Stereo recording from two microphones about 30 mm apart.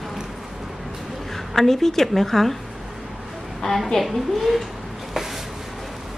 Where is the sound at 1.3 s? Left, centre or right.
Centre.